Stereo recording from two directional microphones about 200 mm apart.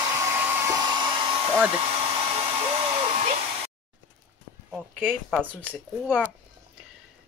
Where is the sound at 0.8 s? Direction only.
20° right (ahead or behind).